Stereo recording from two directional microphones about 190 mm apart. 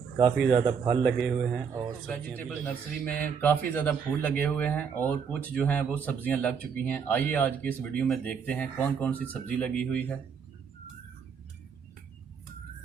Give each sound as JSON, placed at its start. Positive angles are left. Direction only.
{"t": 0.5, "sound": "a man's voice", "side_deg": -30}
{"t": 1.0, "sound": "speech", "side_deg": 0}